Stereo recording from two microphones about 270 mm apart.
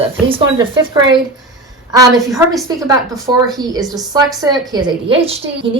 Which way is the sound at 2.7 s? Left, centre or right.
Centre.